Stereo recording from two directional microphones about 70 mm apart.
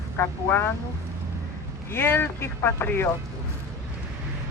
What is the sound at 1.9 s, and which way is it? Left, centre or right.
A man's voice, left.